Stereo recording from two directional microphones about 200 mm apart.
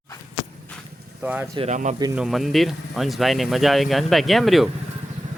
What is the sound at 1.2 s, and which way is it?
Speech, 5° right (ahead or behind).